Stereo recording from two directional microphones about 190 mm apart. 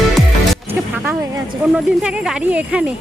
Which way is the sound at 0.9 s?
10° right (ahead or behind).